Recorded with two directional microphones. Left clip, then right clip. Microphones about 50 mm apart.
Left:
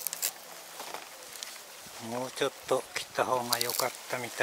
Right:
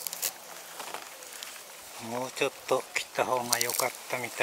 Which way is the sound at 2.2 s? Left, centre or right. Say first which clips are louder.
Right 1 dB; left.